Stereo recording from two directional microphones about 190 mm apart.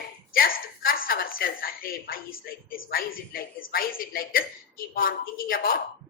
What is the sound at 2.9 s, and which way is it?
A woman's voice, 50° left (ahead or behind).